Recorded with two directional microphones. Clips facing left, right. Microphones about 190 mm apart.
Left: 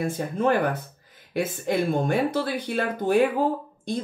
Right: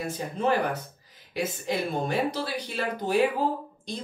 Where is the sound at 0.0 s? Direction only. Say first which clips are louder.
Left 4 dB; 50° left (ahead or behind).